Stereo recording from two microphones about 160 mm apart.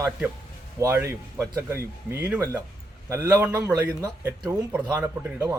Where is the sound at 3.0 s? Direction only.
20° right (ahead or behind).